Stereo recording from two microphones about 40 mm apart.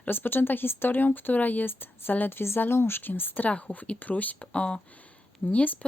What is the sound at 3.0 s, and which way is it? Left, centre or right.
Speech, left.